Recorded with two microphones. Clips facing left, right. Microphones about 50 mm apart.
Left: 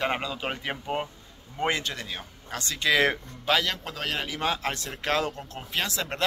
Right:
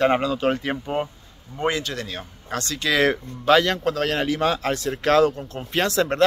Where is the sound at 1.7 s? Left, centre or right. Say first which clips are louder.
Right 4 dB; left.